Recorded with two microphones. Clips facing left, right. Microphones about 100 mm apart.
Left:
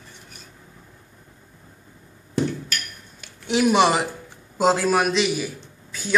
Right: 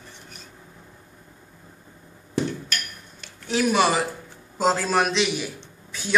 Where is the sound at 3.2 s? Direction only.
15° left (ahead or behind).